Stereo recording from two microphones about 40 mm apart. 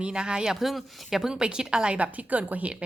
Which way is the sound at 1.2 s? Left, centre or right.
Centre.